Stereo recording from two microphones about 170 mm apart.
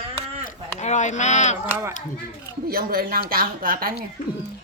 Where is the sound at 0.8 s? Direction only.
45° left (ahead or behind).